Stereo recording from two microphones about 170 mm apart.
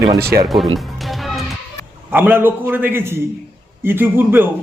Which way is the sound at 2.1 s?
10° right (ahead or behind).